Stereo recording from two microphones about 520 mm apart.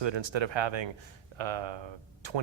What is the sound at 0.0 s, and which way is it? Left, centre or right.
Speech, right.